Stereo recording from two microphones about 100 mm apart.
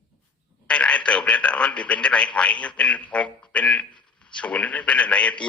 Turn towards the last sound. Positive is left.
turn(degrees=10)  # may be behind; listen again after turning